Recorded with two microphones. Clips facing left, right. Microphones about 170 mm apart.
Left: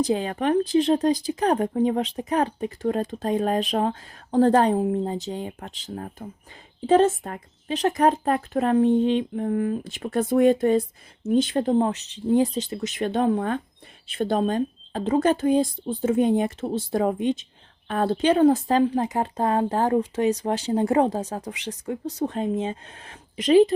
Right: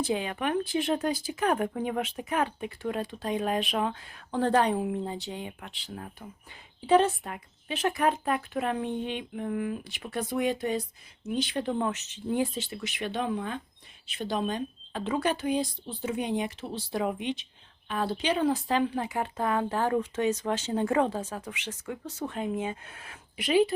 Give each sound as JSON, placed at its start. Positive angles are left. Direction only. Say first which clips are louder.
{"t": 0.0, "sound": "speech", "louder": "left 6 dB", "side_deg": 40}
{"t": 10.0, "sound": "speech", "louder": "left 10 dB", "side_deg": 50}